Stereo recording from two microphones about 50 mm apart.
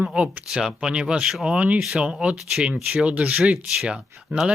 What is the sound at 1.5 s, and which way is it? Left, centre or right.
Speech, right.